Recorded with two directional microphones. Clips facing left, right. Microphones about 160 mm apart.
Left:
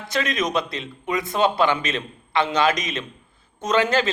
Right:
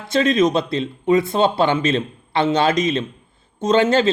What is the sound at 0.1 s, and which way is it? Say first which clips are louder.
A man's voice: right 8 dB; 30° right (ahead or behind).